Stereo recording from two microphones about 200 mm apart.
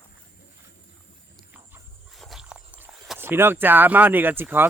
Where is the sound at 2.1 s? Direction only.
Centre (ahead or behind).